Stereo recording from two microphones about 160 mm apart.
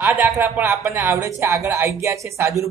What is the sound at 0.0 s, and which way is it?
Speech, 15° right (ahead or behind).